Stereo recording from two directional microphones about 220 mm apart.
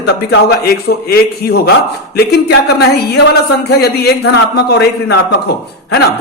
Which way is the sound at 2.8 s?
50° left (ahead or behind).